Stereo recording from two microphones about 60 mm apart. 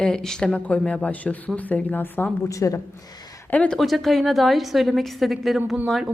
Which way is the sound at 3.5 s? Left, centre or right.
Centre.